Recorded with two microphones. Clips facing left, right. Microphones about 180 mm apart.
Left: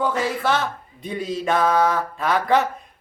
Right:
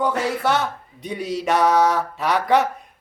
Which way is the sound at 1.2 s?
70° right (ahead or behind).